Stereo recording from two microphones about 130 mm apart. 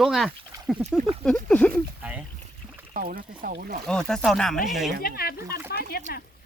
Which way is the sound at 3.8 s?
5° left (ahead or behind).